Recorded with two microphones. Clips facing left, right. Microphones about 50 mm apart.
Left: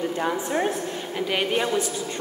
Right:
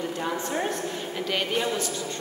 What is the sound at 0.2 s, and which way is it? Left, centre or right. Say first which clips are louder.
Speech: left 4 dB; centre.